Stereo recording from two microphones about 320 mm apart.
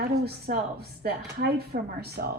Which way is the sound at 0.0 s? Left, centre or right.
Right.